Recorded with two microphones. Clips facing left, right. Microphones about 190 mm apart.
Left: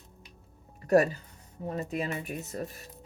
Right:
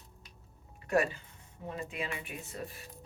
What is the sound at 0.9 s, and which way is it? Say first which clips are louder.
Speech: left 7 dB; 40° left (ahead or behind).